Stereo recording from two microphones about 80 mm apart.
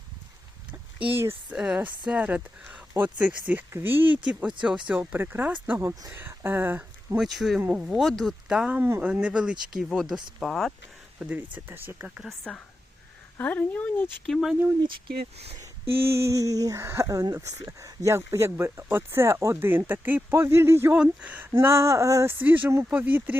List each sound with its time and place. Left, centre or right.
1.5 s speech: centre
3.7 s speech: right
4.3 s speech: centre
7.2 s speech: centre
8.4 s speech: centre
8.8 s speech: right; by 10.8 s centre
11.2 s speech: centre
12.5 s a woman's voice: centre
13.4 s speech: left
15.6 s a sound: right
16.8 s speech: right
21.0 s speech: centre; by 22.4 s right
22.4 s speech: right